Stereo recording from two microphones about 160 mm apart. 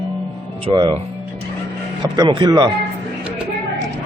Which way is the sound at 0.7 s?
30° right (ahead or behind).